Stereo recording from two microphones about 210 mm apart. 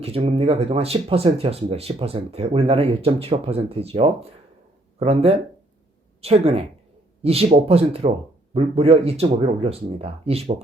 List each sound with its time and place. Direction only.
0.0 s speech: 25° right (ahead or behind)